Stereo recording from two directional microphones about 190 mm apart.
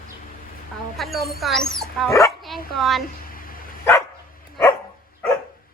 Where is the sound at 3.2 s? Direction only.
50° left (ahead or behind).